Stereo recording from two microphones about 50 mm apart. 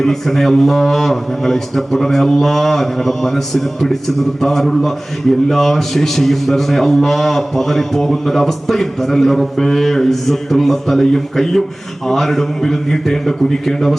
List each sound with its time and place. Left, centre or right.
0.0 s a man's voice: centre